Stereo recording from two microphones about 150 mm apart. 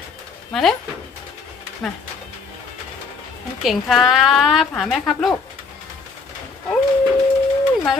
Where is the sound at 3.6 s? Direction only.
Centre (ahead or behind).